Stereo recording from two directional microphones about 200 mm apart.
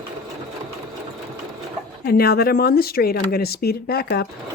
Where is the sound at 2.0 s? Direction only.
50° left (ahead or behind).